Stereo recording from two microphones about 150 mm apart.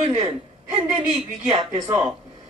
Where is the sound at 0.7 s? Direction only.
40° right (ahead or behind).